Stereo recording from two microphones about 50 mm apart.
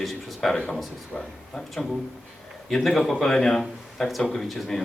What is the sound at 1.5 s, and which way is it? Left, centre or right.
A man's voice, centre.